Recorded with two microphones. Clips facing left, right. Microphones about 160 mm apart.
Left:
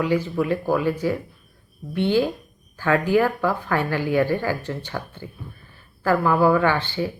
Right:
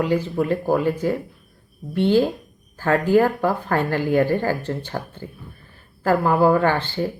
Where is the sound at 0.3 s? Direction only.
40° right (ahead or behind).